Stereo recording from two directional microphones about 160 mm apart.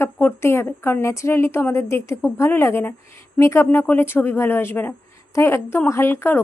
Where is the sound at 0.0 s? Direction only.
15° left (ahead or behind).